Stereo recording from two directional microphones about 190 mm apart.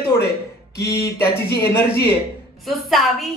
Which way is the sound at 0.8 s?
55° left (ahead or behind).